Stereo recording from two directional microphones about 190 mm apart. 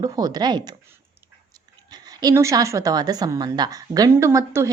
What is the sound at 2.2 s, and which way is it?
Speech, 15° right (ahead or behind).